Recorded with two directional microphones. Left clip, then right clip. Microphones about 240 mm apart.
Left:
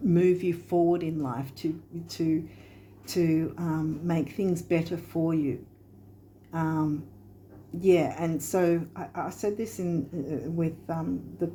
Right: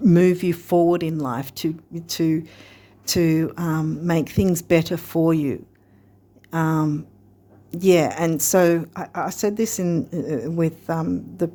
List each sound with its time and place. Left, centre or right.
0.0 s speech: right